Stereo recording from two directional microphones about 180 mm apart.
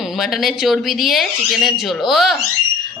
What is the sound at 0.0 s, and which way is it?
Speech, centre (ahead or behind).